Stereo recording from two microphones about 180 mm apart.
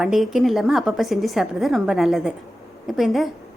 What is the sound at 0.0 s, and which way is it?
A woman's voice, centre (ahead or behind).